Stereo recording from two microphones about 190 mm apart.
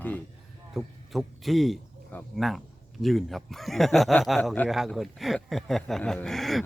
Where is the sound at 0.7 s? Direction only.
Centre (ahead or behind).